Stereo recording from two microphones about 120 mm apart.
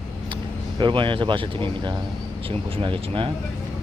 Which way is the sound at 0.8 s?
45° right (ahead or behind).